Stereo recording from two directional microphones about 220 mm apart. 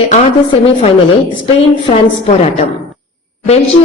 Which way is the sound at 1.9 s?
30° left (ahead or behind).